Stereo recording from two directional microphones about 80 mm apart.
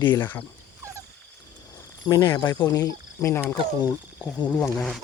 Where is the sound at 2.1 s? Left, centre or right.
Left.